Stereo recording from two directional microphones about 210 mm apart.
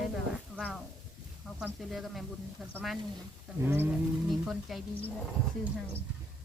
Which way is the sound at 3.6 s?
10° right (ahead or behind).